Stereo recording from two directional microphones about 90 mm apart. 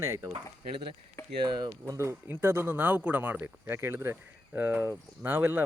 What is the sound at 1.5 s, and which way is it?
Speech, 55° right (ahead or behind).